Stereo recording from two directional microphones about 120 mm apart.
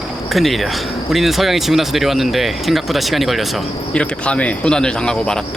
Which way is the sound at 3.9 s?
10° left (ahead or behind).